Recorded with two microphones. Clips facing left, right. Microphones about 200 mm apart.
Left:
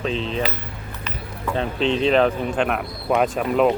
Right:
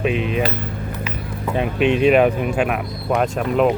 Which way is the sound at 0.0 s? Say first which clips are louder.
Right 4 dB; 15° right (ahead or behind).